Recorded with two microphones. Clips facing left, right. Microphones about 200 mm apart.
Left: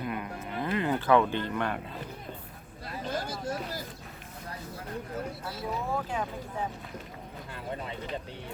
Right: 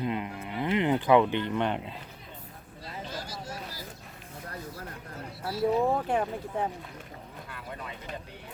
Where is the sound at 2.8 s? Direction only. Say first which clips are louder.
Left 5 dB; 55° left (ahead or behind).